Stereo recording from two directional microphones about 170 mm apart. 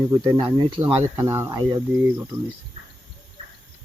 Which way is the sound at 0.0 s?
25° right (ahead or behind).